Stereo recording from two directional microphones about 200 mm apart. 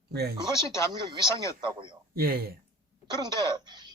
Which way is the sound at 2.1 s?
50° right (ahead or behind).